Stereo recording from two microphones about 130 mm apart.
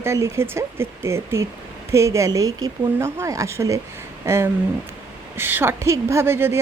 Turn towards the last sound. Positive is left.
turn(degrees=-20)  # may be behind; listen again after turning